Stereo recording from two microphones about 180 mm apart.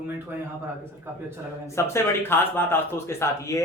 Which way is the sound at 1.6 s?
15° left (ahead or behind).